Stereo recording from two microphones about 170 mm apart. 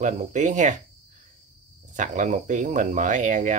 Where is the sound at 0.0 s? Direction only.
45° right (ahead or behind).